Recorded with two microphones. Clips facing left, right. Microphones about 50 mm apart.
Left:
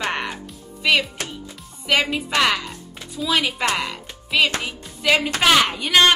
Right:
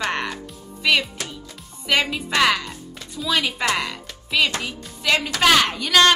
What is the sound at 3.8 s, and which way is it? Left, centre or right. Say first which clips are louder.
Music: even; centre.